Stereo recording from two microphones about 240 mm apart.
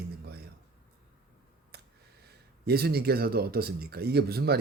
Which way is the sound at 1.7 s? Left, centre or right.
Right.